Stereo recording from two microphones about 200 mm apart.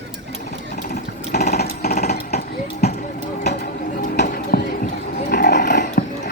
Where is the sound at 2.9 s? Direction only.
55° left (ahead or behind).